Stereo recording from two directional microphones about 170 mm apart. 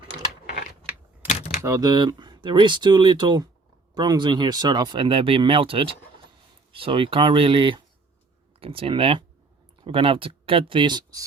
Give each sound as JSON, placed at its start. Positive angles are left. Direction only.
{"t": 1.6, "sound": "speech", "side_deg": -20}